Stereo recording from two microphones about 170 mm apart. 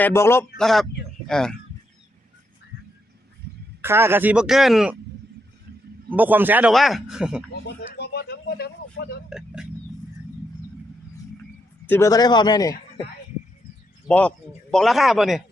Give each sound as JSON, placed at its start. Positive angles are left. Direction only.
{"t": 0.0, "sound": "speech", "side_deg": 15}
{"t": 0.6, "sound": "speech", "side_deg": 0}
{"t": 3.8, "sound": "speech", "side_deg": -15}
{"t": 6.1, "sound": "speech", "side_deg": -10}
{"t": 7.8, "sound": "speech", "side_deg": 75}
{"t": 11.9, "sound": "speech", "side_deg": 15}
{"t": 14.1, "sound": "speech", "side_deg": 5}